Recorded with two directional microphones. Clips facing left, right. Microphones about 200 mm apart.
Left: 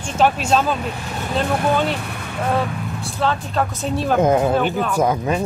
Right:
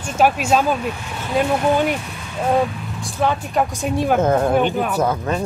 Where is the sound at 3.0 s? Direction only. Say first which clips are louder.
Right 2 dB; 15° right (ahead or behind).